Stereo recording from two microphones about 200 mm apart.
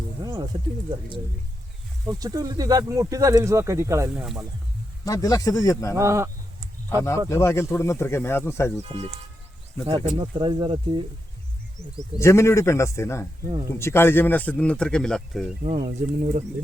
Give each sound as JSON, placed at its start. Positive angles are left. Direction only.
{"t": 0.2, "sound": "a sound", "side_deg": -20}
{"t": 2.0, "sound": "speech", "side_deg": -20}
{"t": 4.1, "sound": "speech", "side_deg": -5}
{"t": 5.0, "sound": "speech", "side_deg": 15}
{"t": 6.0, "sound": "speech", "side_deg": -15}
{"t": 6.9, "sound": "speech", "side_deg": 15}
{"t": 8.8, "sound": "speech", "side_deg": -30}
{"t": 12.2, "sound": "speech", "side_deg": 15}
{"t": 16.0, "sound": "speech", "side_deg": -35}